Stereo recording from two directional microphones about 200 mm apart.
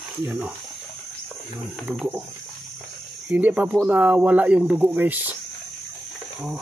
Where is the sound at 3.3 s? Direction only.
10° right (ahead or behind).